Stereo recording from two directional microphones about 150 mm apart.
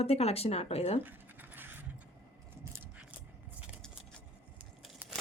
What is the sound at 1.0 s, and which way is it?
Scratch, 10° right (ahead or behind).